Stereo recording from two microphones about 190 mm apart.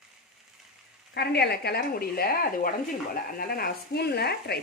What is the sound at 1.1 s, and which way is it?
Speech, 60° left (ahead or behind).